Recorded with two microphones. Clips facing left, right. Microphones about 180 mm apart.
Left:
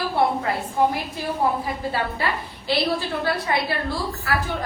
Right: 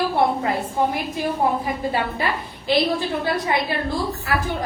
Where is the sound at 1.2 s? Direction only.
20° right (ahead or behind).